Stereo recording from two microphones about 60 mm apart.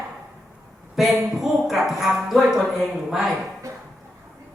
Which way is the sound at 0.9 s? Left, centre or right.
Centre.